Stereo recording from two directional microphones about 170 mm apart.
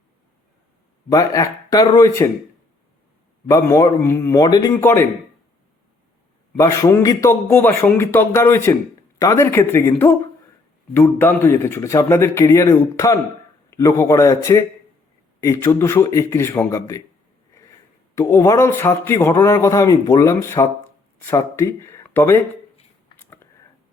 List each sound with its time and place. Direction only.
1.1 s speech: 20° left (ahead or behind)
3.5 s speech: 15° left (ahead or behind)
6.6 s speech: 20° left (ahead or behind)
18.1 s speech: 15° left (ahead or behind)